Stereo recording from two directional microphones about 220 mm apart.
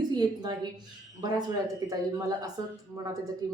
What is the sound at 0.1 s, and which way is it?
A woman's voice, 20° right (ahead or behind).